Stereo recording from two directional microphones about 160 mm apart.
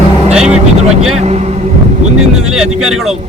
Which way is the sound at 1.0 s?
45° right (ahead or behind).